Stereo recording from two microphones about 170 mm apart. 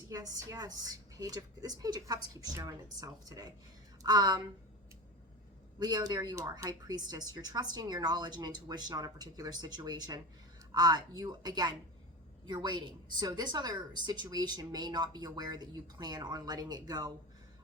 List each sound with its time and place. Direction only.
0.1 s a woman's voice: 20° right (ahead or behind)
5.8 s a woman's voice: 25° right (ahead or behind)